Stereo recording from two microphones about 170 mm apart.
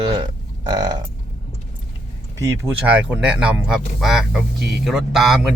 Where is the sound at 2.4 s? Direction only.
15° right (ahead or behind).